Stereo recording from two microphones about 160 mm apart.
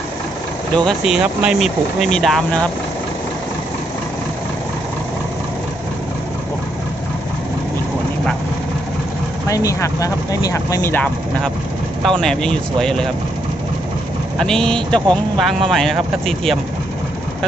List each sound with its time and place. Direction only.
0.8 s speech: centre (ahead or behind)
9.5 s speech: 20° left (ahead or behind); by 13.1 s 5° left (ahead or behind)
14.3 s speech: 5° left (ahead or behind)